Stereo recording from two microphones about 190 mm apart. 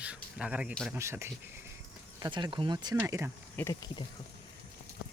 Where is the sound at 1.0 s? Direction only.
15° right (ahead or behind).